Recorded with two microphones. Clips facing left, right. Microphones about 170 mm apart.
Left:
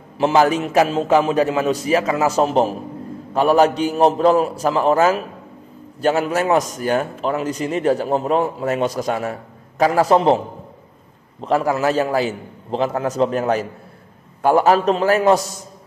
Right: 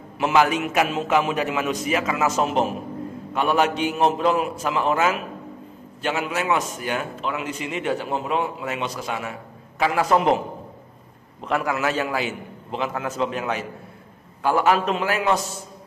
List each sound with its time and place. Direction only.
0.2 s a man's voice: 35° left (ahead or behind)
11.4 s a man's voice: 35° left (ahead or behind)